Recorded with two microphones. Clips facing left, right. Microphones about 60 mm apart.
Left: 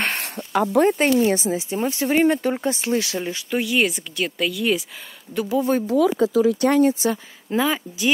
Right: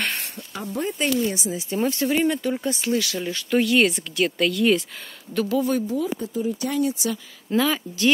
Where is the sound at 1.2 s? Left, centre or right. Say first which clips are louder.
Left 6 dB; left.